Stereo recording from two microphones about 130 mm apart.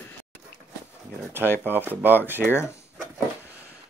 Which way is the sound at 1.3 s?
15° right (ahead or behind).